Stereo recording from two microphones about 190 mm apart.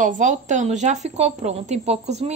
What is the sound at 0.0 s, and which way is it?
A woman's voice, 40° right (ahead or behind).